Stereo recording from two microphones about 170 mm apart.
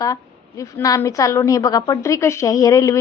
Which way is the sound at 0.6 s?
20° left (ahead or behind).